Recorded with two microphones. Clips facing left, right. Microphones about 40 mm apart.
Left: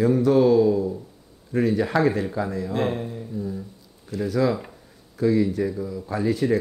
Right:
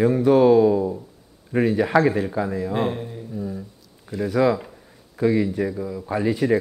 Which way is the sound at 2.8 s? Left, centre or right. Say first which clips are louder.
Even; centre.